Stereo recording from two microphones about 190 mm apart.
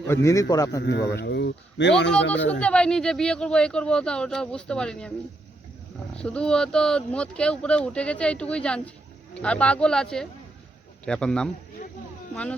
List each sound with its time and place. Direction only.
0.1 s a man's voice: 15° left (ahead or behind)
0.9 s speech: 60° left (ahead or behind)
2.5 s speech: 5° left (ahead or behind)
6.1 s a man's voice: 5° left (ahead or behind)